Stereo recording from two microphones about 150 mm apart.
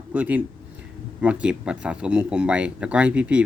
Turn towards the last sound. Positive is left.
turn(degrees=-5)  # may be behind; listen again after turning